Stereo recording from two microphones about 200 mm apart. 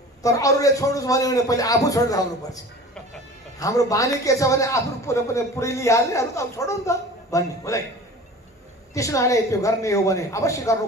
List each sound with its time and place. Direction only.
0.2 s a man's voice: 15° left (ahead or behind)
8.9 s a man's voice: 15° left (ahead or behind)